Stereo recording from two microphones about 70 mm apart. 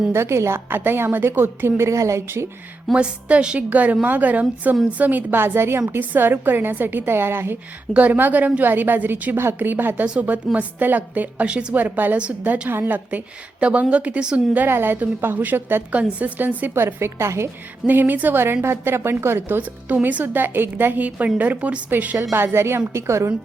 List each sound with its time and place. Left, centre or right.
0.1 s a woman's voice: right
2.2 s a woman's voice: right
2.9 s a woman's voice: centre
11.8 s a woman's voice: right
14.7 s a woman's voice: right
16.7 s a woman's voice: right
17.8 s a woman's voice: right
22.2 s a woman's voice: right